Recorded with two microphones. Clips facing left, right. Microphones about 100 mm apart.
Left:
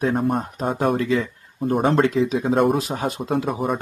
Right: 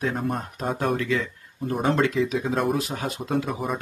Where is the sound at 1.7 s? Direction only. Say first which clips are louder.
Left 4 dB; 50° left (ahead or behind).